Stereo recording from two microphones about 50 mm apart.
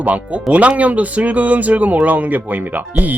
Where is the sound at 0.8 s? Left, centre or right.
Right.